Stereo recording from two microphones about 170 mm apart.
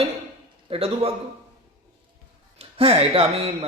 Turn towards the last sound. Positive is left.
turn(degrees=-35)  # may be behind; listen again after turning